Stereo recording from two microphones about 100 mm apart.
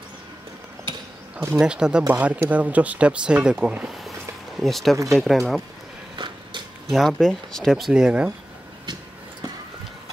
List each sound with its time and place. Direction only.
1.6 s speech: 10° right (ahead or behind)
6.1 s a sound: 50° right (ahead or behind)
6.9 s speech: centre (ahead or behind)